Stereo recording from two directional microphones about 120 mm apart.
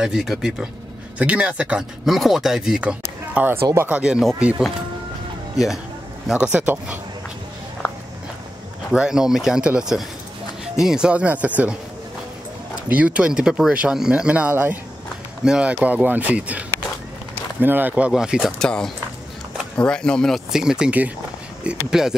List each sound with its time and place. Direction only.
0.0 s speech: 5° right (ahead or behind)
3.6 s speech: 25° right (ahead or behind)
3.9 s speech: 5° right (ahead or behind)
6.2 s speech: 10° right (ahead or behind)
7.8 s walk: 10° left (ahead or behind)
8.9 s speech: 5° right (ahead or behind)
12.8 s speech: 10° right (ahead or behind)
18.6 s speech: 5° left (ahead or behind)